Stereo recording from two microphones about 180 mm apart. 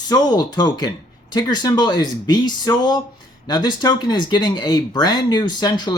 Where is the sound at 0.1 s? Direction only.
20° left (ahead or behind).